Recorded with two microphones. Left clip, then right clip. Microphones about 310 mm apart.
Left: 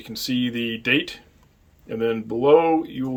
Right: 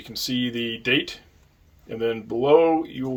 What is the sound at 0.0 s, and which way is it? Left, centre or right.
Speech, centre.